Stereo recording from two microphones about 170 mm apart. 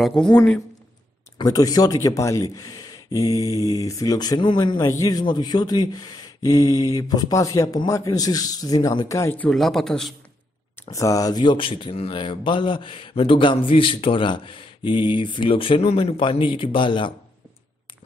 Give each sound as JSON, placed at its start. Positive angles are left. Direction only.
{"t": 0.0, "sound": "speech", "side_deg": 5}
{"t": 1.4, "sound": "speech", "side_deg": 20}
{"t": 10.8, "sound": "speech", "side_deg": 20}